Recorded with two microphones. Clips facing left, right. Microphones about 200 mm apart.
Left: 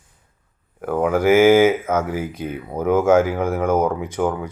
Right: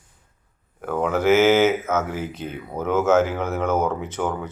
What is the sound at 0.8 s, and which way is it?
Speech, 10° left (ahead or behind).